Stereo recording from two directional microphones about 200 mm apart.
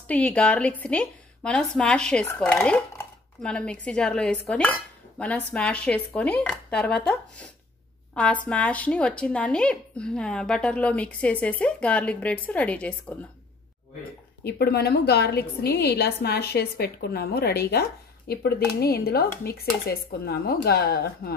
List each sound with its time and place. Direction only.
0.1 s speech: 5° left (ahead or behind)
4.5 s dishes: 5° left (ahead or behind)
5.2 s a woman's voice: 5° left (ahead or behind)
14.4 s a woman's voice: 55° left (ahead or behind)